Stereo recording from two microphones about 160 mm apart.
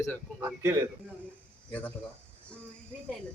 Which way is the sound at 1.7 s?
10° left (ahead or behind).